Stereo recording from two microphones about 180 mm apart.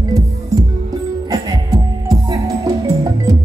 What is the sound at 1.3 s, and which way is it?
Music, 20° right (ahead or behind).